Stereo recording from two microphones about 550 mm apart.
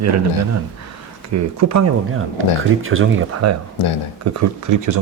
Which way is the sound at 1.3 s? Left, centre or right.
Right.